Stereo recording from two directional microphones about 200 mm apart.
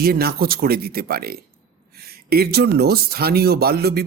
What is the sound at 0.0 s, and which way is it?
Speech, 50° right (ahead or behind).